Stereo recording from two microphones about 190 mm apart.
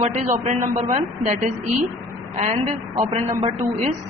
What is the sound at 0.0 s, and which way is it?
A woman's voice, 40° right (ahead or behind).